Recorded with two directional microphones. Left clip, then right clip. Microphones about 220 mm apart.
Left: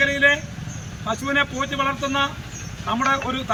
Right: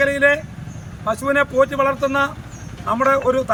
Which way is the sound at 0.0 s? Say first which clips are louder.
Right 2 dB; 20° right (ahead or behind).